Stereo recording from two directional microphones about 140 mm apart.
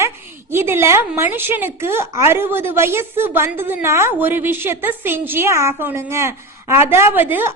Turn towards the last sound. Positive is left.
turn(degrees=-15)  # may be behind; listen again after turning